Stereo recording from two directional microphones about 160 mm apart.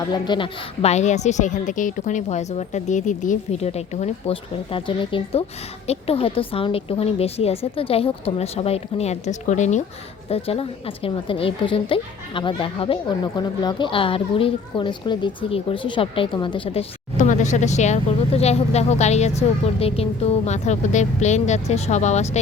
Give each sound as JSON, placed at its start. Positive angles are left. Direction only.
{"t": 0.1, "sound": "a woman's voice", "side_deg": 30}
{"t": 10.2, "sound": "a woman's voice", "side_deg": 40}